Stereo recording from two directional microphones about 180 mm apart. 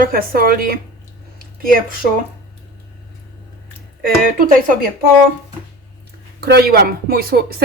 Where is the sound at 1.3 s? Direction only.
50° right (ahead or behind).